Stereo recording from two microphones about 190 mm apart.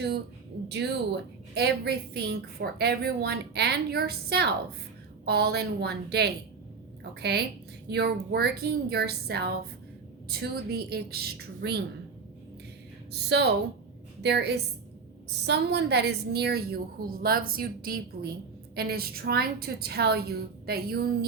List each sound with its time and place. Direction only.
0.7 s a woman's voice: 65° right (ahead or behind)
13.2 s a woman's voice: 65° right (ahead or behind)